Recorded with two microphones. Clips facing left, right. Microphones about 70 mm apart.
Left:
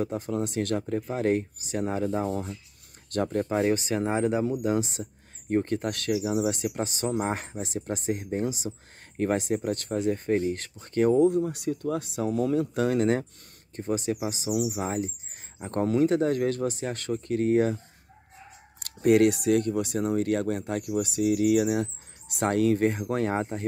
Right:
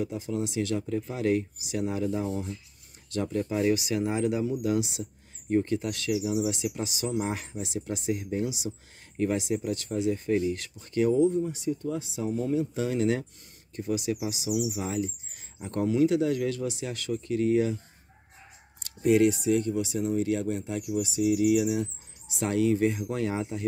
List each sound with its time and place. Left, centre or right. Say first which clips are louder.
0.0 s speech: left 2 dB; left
12.3 s speech: left 2 dB; left
13.7 s speech: left 1 dB; left
18.8 s speech: left 2 dB; left